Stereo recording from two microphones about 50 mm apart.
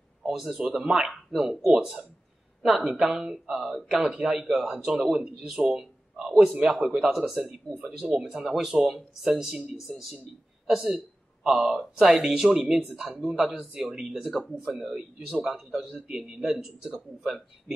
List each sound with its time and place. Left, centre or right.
0.3 s speech: centre
0.6 s a man's voice: centre
8.1 s speech: centre
12.4 s speech: centre